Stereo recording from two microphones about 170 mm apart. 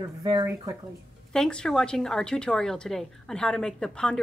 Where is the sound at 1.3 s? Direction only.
5° left (ahead or behind).